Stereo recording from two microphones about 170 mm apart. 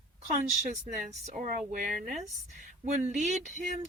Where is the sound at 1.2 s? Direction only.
45° right (ahead or behind).